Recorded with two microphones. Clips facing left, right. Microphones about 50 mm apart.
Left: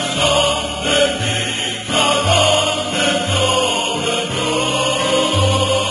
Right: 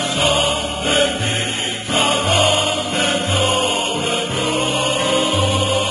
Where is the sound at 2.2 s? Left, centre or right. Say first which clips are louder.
Left 2 dB; left.